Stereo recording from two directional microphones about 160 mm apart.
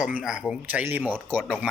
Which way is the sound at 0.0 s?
5° right (ahead or behind).